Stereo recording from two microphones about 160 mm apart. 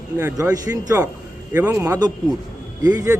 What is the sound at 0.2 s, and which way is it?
A man's voice, 15° right (ahead or behind).